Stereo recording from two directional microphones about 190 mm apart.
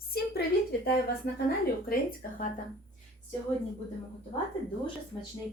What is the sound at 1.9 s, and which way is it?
Speech, 45° left (ahead or behind).